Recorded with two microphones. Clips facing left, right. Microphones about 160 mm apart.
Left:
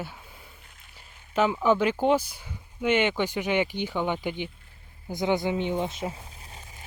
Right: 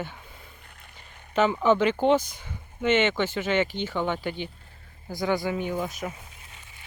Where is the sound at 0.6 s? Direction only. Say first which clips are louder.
Right 4 dB; 55° right (ahead or behind).